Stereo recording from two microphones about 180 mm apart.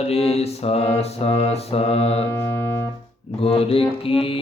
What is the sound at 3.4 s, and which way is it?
Mantra, 35° left (ahead or behind).